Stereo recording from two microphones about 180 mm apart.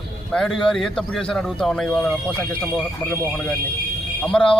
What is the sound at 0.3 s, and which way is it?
A man's voice, 5° left (ahead or behind).